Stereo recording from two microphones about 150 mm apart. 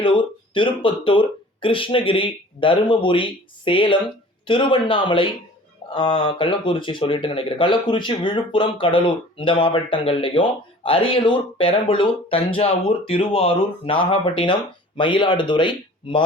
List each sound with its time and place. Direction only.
0.0 s speech: 35° left (ahead or behind)